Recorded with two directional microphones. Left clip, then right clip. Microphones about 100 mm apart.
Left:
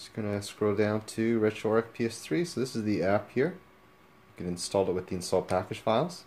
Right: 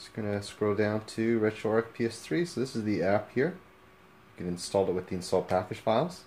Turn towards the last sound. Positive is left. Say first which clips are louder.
# even
turn(degrees=30)  # may be behind; listen again after turning